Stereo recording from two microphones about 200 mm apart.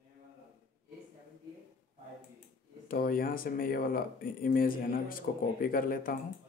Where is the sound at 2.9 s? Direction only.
45° left (ahead or behind).